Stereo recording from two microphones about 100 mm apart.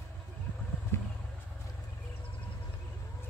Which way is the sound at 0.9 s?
25° left (ahead or behind).